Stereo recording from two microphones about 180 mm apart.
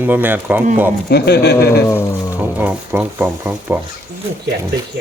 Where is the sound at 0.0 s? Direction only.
10° right (ahead or behind).